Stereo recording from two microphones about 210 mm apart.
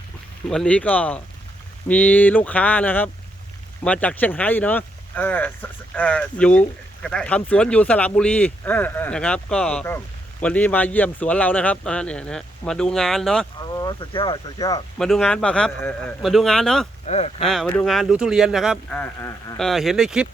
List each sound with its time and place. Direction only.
0.4 s speech: 5° left (ahead or behind)
13.7 s speech: 20° left (ahead or behind)
14.9 s speech: centre (ahead or behind)
17.1 s speech: 30° left (ahead or behind)
17.4 s speech: centre (ahead or behind)
18.9 s speech: 10° left (ahead or behind)
19.5 s speech: centre (ahead or behind)